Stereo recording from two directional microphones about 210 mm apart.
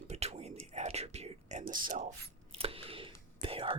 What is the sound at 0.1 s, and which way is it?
Whispering, 30° right (ahead or behind).